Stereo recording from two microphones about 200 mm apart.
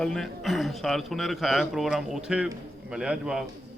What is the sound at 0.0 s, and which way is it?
Speech, centre (ahead or behind).